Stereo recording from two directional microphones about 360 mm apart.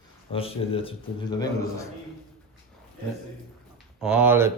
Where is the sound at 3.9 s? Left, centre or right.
Centre.